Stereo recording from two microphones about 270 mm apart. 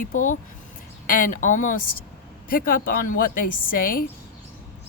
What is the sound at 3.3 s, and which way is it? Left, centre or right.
Speech, left.